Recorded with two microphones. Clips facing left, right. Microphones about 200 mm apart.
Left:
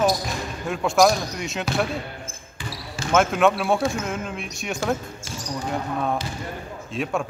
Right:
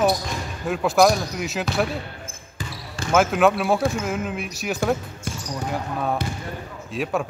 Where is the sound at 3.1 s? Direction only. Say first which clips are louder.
Right 1 dB; centre (ahead or behind).